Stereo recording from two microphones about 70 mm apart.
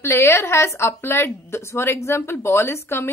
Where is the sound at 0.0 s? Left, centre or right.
Left.